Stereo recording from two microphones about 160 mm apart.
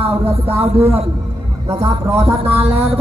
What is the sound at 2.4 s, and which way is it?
Speech, 40° right (ahead or behind).